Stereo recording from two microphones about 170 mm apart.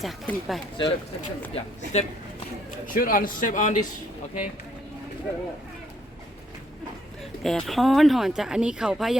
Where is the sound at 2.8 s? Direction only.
55° left (ahead or behind).